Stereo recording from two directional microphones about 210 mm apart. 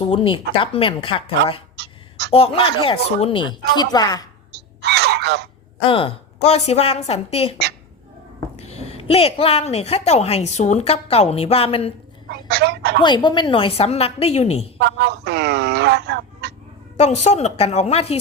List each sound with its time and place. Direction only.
0.0 s a woman's voice: 25° left (ahead or behind)
1.7 s a sound: 50° right (ahead or behind)
2.3 s a woman's voice: 25° left (ahead or behind)
4.8 s a sound: 50° right (ahead or behind)
5.8 s a woman's voice: 25° left (ahead or behind)
8.5 s a woman's voice: 30° left (ahead or behind)
12.3 s speech: 50° right (ahead or behind)
13.0 s a woman's voice: 20° left (ahead or behind)
14.8 s speech: 55° right (ahead or behind)
17.0 s a woman's voice: 35° left (ahead or behind)